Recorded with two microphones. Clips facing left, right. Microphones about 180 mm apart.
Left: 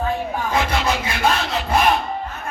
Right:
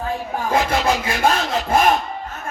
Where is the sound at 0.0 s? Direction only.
40° right (ahead or behind).